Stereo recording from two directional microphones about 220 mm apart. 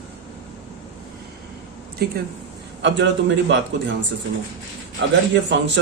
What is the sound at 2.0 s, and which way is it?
A man's voice, 45° right (ahead or behind).